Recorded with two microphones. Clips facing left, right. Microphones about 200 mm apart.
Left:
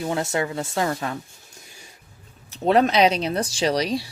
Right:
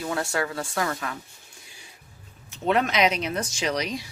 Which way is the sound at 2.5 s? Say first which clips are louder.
Left 5 dB; 35° left (ahead or behind).